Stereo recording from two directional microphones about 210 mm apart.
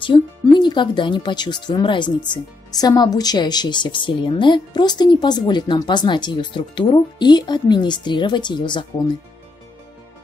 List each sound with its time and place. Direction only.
0.0 s a woman's voice: 20° left (ahead or behind)